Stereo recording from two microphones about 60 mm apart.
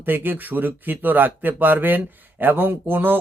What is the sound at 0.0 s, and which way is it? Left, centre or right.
Speech, right.